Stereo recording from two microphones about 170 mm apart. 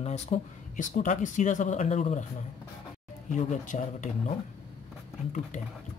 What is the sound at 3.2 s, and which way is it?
Speech, 45° left (ahead or behind).